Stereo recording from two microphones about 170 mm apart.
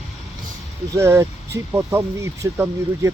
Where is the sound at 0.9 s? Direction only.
15° right (ahead or behind).